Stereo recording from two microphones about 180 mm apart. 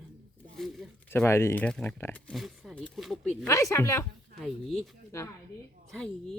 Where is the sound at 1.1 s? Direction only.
15° left (ahead or behind).